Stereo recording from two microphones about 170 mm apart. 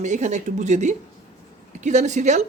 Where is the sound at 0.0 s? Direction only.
45° right (ahead or behind).